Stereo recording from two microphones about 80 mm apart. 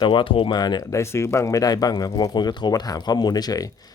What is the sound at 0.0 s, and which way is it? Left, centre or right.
Speech, left.